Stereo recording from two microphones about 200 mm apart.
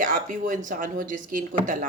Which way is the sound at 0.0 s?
45° right (ahead or behind).